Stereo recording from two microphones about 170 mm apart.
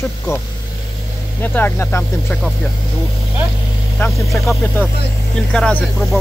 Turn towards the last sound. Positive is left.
turn(degrees=0)  # may be behind; listen again after turning